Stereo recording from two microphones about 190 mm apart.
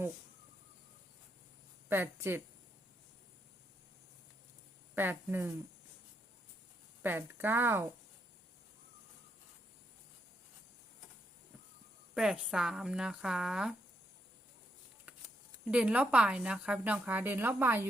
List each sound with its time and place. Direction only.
1.9 s speech: 10° right (ahead or behind)
4.9 s speech: 10° right (ahead or behind)
7.0 s speech: 10° right (ahead or behind)
12.1 s speech: 5° right (ahead or behind)
15.1 s shuffling cards: 5° right (ahead or behind)
15.7 s speech: 5° right (ahead or behind)